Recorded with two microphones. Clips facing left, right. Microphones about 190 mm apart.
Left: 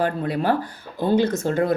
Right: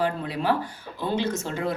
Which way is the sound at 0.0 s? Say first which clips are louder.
Left 4 dB; 50° left (ahead or behind).